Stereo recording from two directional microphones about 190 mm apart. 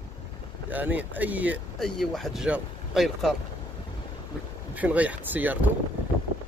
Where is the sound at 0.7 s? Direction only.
10° right (ahead or behind).